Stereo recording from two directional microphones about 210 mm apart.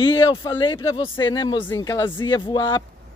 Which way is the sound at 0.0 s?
20° left (ahead or behind).